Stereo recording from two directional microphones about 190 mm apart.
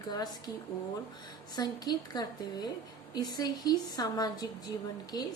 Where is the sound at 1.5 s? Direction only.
20° left (ahead or behind).